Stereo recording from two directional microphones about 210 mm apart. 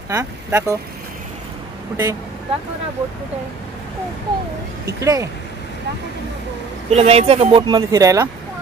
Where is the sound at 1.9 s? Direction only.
15° right (ahead or behind).